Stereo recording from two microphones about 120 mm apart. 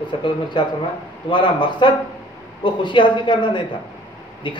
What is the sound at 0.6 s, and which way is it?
A man's voice, 40° left (ahead or behind).